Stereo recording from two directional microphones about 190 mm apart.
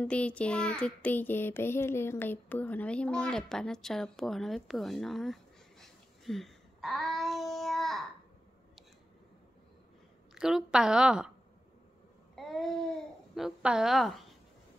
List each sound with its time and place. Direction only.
0.0 s child singing: 5° left (ahead or behind)
10.3 s child singing: 5° right (ahead or behind)
12.4 s speech: centre (ahead or behind)